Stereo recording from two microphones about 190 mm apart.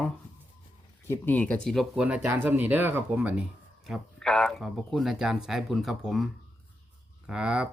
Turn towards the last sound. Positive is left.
turn(degrees=-5)  # may be behind; listen again after turning